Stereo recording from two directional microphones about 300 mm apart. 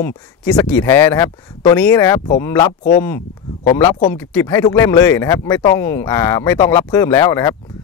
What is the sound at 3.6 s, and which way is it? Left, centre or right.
Speech, centre.